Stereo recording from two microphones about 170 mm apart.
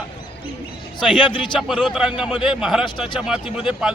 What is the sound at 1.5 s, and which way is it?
Speech, centre (ahead or behind).